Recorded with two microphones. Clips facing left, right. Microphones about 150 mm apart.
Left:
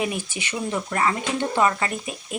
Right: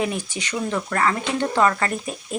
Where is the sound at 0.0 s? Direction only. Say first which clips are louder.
Right 2 dB; 15° left (ahead or behind).